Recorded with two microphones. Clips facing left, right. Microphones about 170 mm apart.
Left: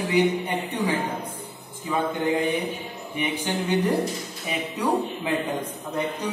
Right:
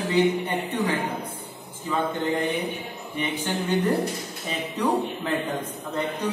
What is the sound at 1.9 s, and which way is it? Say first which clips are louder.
Speech: left 1 dB; 15° left (ahead or behind).